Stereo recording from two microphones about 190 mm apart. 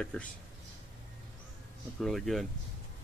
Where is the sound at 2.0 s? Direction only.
Centre (ahead or behind).